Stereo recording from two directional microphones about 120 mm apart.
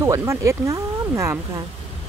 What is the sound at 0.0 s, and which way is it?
Speech, 25° right (ahead or behind).